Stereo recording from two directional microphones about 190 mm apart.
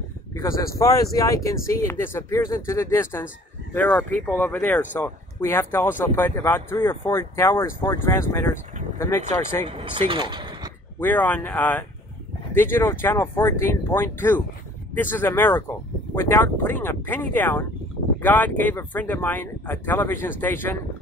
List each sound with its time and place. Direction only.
0.3 s speech: 15° left (ahead or behind)
9.7 s speech: 30° right (ahead or behind)
11.0 s speech: 10° left (ahead or behind)